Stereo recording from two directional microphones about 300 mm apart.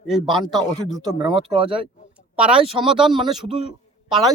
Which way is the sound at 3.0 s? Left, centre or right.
Centre.